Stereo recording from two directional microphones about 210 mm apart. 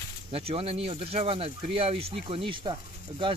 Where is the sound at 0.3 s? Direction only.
25° right (ahead or behind).